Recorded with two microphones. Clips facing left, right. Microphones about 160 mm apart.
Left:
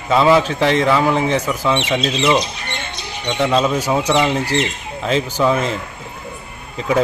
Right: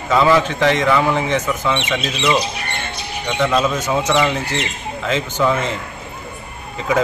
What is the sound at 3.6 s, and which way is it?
Speech, 10° left (ahead or behind).